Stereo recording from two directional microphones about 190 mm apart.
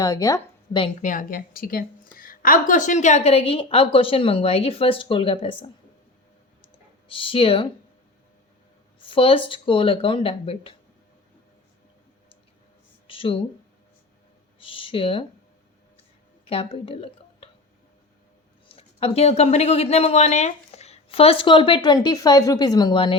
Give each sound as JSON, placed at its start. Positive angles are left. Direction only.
{"t": 0.0, "sound": "a woman's voice", "side_deg": 20}
{"t": 1.0, "sound": "a woman's voice", "side_deg": 45}
{"t": 6.6, "sound": "clicking", "side_deg": 30}
{"t": 9.0, "sound": "speech", "side_deg": 30}
{"t": 13.1, "sound": "speech", "side_deg": 30}
{"t": 14.6, "sound": "speech", "side_deg": 25}
{"t": 16.5, "sound": "speech", "side_deg": 30}
{"t": 18.7, "sound": "a woman's voice", "side_deg": 30}